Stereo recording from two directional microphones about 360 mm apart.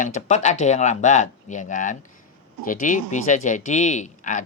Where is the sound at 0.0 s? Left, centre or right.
Centre.